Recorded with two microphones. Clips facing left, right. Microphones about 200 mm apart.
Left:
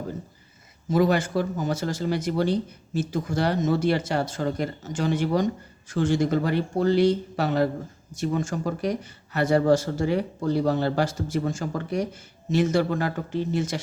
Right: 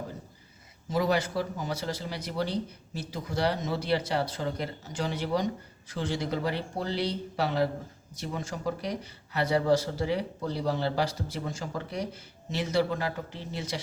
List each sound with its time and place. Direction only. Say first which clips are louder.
0.9 s a man's voice: left 5 dB; 50° left (ahead or behind)